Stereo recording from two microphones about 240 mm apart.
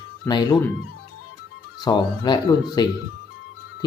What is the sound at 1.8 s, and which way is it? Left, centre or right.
Speech, centre.